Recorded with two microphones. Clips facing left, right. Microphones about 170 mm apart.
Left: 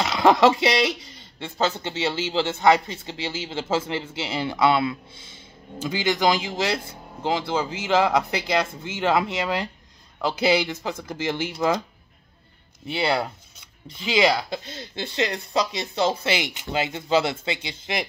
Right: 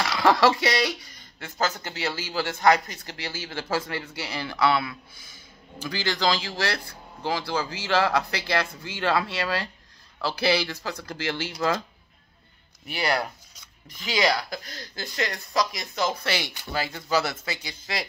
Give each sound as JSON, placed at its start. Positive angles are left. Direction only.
{"t": 0.0, "sound": "speech", "side_deg": 20}
{"t": 12.8, "sound": "speech", "side_deg": 25}